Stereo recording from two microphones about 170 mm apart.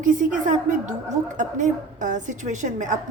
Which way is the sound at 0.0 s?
50° right (ahead or behind).